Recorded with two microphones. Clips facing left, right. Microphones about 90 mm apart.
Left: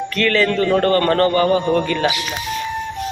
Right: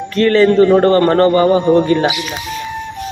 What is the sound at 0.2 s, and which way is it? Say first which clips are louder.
A man's voice: right 8 dB; 25° right (ahead or behind).